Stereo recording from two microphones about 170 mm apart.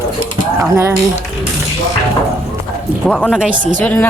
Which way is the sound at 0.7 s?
15° right (ahead or behind).